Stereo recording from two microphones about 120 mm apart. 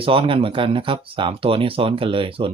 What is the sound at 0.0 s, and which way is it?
Speech, 50° right (ahead or behind).